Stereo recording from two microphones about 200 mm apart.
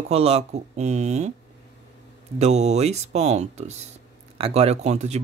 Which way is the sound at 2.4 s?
35° right (ahead or behind).